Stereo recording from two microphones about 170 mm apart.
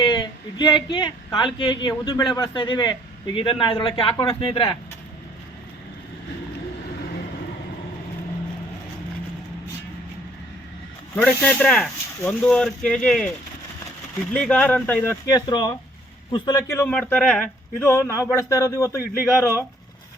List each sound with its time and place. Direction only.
0.0 s speech: 25° left (ahead or behind)
11.1 s speech: 10° left (ahead or behind)
14.3 s a man's voice: 5° left (ahead or behind)
17.8 s a man's voice: 15° left (ahead or behind)